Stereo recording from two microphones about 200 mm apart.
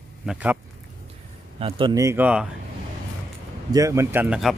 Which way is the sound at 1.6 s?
25° right (ahead or behind).